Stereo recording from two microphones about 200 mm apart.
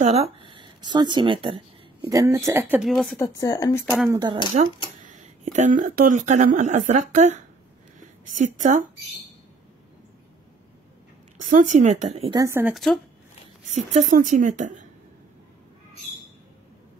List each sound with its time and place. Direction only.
0.0 s speech: 30° right (ahead or behind); by 3.2 s centre (ahead or behind)
3.2 s speech: 15° left (ahead or behind)
4.1 s speech: 20° right (ahead or behind)
5.0 s a woman's voice: 35° right (ahead or behind)
11.3 s a woman's voice: 40° right (ahead or behind)
12.4 s speech: 10° right (ahead or behind)
12.7 s speech: centre (ahead or behind)
13.9 s a woman's voice: 40° right (ahead or behind)